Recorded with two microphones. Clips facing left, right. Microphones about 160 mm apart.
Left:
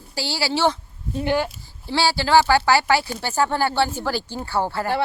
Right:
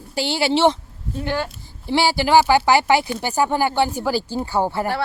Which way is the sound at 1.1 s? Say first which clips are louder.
Left 3 dB; 15° left (ahead or behind).